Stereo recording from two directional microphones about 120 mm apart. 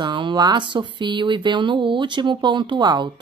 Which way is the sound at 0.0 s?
40° right (ahead or behind).